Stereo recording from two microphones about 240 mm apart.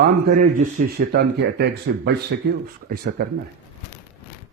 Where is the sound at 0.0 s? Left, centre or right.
Right.